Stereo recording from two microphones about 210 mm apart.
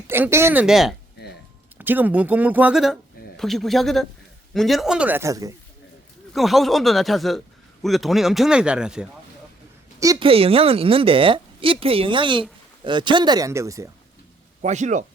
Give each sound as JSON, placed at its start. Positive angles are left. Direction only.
{"t": 0.1, "sound": "a man's voice", "side_deg": -10}
{"t": 6.3, "sound": "a man's voice", "side_deg": 0}
{"t": 10.0, "sound": "a woman's voice", "side_deg": -20}
{"t": 14.6, "sound": "speech", "side_deg": -35}